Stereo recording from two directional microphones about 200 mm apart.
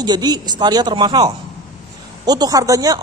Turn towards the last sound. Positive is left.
turn(degrees=-15)  # may be behind; listen again after turning